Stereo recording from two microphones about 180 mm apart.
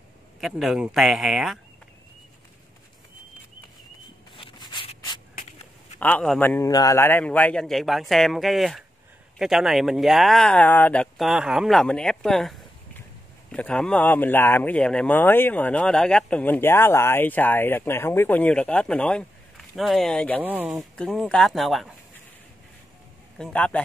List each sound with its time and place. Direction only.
0.4 s speech: centre (ahead or behind)
4.4 s rub: 25° left (ahead or behind)
5.9 s speech: 10° left (ahead or behind)
20.4 s speech: 10° right (ahead or behind)
20.9 s speech: 5° left (ahead or behind)
23.3 s speech: 5° left (ahead or behind)